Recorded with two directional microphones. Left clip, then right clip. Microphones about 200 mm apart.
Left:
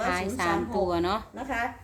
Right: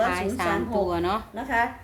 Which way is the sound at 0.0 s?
15° left (ahead or behind).